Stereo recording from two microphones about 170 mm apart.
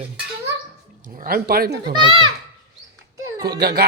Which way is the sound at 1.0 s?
55° right (ahead or behind).